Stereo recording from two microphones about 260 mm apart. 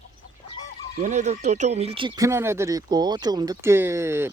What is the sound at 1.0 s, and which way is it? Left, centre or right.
Speech, right.